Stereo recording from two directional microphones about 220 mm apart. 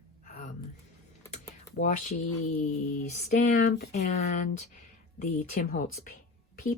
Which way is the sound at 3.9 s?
30° left (ahead or behind).